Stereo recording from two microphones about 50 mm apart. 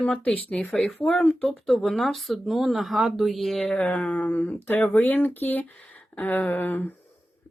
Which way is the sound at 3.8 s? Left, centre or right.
Left.